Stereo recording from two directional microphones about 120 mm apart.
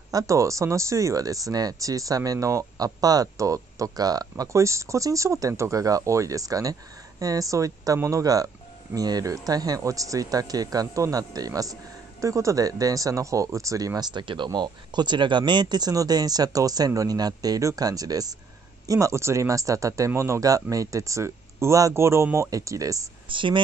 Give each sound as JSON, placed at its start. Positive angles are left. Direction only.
{"t": 0.1, "sound": "speech", "side_deg": -25}
{"t": 23.2, "sound": "speech", "side_deg": -45}